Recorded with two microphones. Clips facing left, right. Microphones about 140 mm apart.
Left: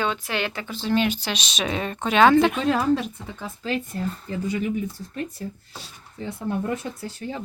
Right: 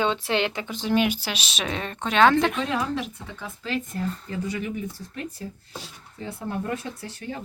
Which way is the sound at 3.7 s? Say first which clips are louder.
Left 1 dB; 30° left (ahead or behind).